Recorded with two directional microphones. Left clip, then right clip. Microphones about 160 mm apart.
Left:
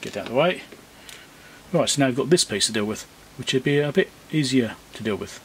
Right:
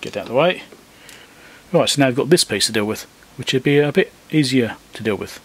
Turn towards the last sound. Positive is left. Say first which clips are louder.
# right 5 dB
turn(degrees=-25)  # may be behind; listen again after turning